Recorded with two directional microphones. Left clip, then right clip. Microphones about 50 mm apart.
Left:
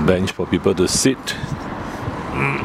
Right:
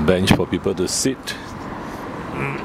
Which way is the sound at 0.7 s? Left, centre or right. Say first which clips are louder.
Left 7 dB; centre.